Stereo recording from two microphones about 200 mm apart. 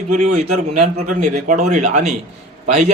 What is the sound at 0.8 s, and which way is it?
A man's voice, 35° right (ahead or behind).